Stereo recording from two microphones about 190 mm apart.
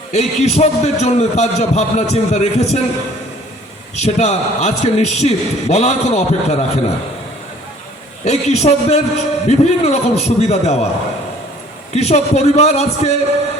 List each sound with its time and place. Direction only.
0.1 s a man's voice: 35° left (ahead or behind)
3.9 s a man's voice: 35° left (ahead or behind)
8.2 s a man's voice: 35° left (ahead or behind)
11.9 s a man's voice: 35° left (ahead or behind)